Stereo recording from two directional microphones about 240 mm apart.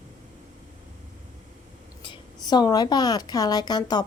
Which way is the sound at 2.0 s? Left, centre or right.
Centre.